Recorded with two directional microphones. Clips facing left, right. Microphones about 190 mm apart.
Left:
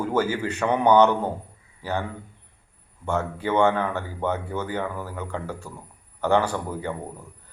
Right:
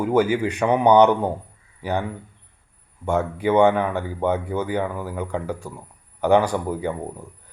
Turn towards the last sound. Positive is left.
turn(degrees=-15)  # may be behind; listen again after turning